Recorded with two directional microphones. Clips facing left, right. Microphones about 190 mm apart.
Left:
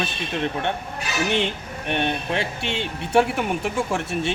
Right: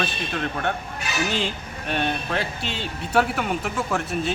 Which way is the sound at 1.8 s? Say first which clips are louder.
Left 1 dB; 20° left (ahead or behind).